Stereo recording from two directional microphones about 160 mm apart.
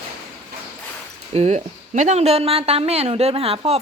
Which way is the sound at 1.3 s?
45° right (ahead or behind).